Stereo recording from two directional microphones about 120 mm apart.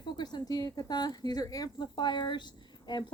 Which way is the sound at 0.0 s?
40° left (ahead or behind).